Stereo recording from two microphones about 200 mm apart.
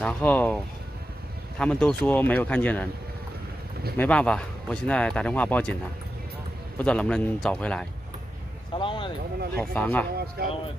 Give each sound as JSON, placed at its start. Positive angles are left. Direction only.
{"t": 0.0, "sound": "speech", "side_deg": 10}
{"t": 1.6, "sound": "speech", "side_deg": 5}
{"t": 3.9, "sound": "speech", "side_deg": 5}
{"t": 6.8, "sound": "speech", "side_deg": 5}
{"t": 8.7, "sound": "speech", "side_deg": 25}
{"t": 9.6, "sound": "speech", "side_deg": 10}
{"t": 10.4, "sound": "speech", "side_deg": -50}